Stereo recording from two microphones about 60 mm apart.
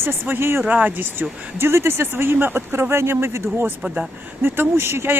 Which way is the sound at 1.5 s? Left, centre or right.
Right.